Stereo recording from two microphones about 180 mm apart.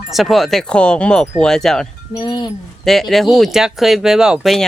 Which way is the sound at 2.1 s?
25° left (ahead or behind).